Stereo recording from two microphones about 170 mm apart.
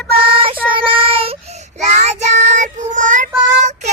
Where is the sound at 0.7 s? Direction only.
30° right (ahead or behind).